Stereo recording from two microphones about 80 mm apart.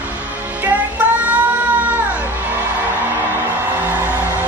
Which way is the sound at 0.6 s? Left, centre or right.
Centre.